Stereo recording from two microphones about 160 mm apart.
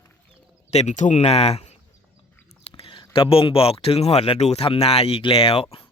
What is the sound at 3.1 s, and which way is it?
Speech, 35° left (ahead or behind).